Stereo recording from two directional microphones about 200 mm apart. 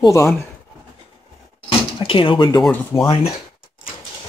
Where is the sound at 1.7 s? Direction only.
25° left (ahead or behind).